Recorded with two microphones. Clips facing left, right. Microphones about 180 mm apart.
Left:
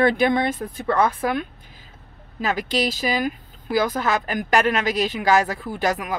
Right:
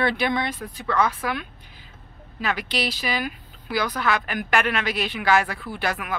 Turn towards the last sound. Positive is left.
turn(degrees=40)  # may be behind; listen again after turning